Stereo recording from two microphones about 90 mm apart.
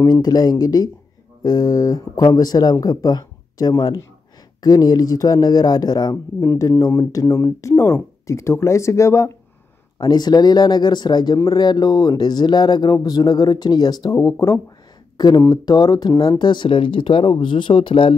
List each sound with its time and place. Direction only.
0.0 s speech: 50° left (ahead or behind)
6.5 s speech: 35° left (ahead or behind)
9.9 s speech: 50° left (ahead or behind)
15.1 s speech: 50° left (ahead or behind); by 18.1 s 70° left (ahead or behind)